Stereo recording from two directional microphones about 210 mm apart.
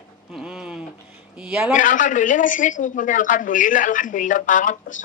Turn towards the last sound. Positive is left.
turn(degrees=40)  # may be behind; listen again after turning